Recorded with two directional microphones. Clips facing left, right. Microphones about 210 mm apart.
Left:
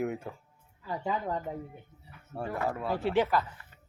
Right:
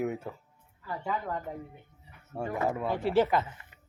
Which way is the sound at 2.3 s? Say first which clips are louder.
Right 2 dB; 15° right (ahead or behind).